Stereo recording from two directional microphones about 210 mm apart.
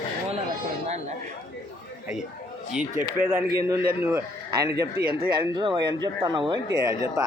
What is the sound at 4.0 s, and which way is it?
Speech, 10° right (ahead or behind).